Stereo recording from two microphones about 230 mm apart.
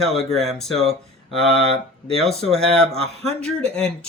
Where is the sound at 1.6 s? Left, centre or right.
Right.